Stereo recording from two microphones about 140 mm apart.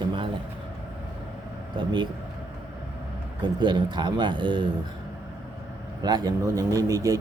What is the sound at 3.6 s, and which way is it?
Speech, 30° right (ahead or behind).